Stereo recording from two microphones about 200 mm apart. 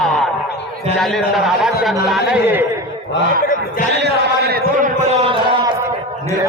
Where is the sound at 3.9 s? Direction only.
55° right (ahead or behind).